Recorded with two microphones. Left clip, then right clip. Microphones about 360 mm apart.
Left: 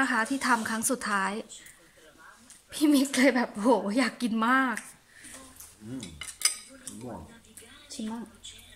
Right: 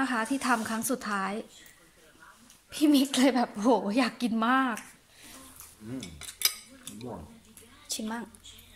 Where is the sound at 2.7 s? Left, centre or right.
Centre.